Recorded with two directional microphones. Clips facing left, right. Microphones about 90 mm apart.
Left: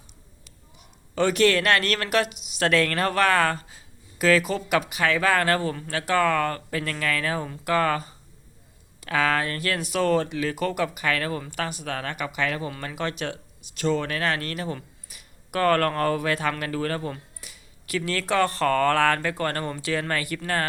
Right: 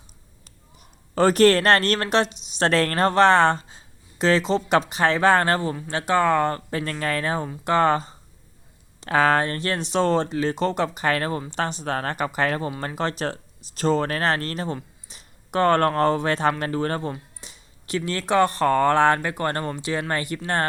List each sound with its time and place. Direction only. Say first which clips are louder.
0.4 s a woman's voice: right 2 dB; 40° right (ahead or behind)
15.1 s a sound: right 4 dB; 25° right (ahead or behind)
16.0 s speech: right 3 dB; 30° right (ahead or behind)